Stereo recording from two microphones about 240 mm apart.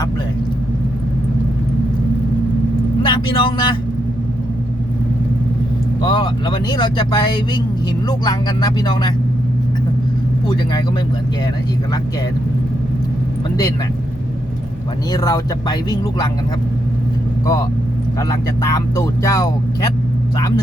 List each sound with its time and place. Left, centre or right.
3.0 s speech: centre
6.0 s speech: centre
10.5 s speech: centre
15.1 s speech: centre
17.4 s speech: centre
18.7 s speech: centre